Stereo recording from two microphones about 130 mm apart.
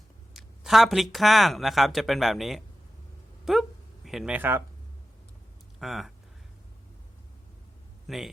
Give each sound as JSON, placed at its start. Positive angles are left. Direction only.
{"t": 0.3, "sound": "speech", "side_deg": 0}
{"t": 3.4, "sound": "a sound", "side_deg": 0}
{"t": 4.4, "sound": "speech", "side_deg": -15}
{"t": 5.8, "sound": "speech", "side_deg": 0}
{"t": 8.0, "sound": "speech", "side_deg": 0}